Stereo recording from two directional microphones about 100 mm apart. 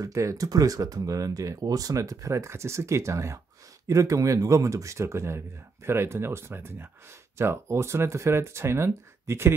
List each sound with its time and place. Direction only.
0.0 s speech: 30° right (ahead or behind)